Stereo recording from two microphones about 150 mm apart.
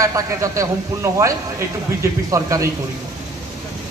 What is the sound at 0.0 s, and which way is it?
A man's voice, 20° right (ahead or behind).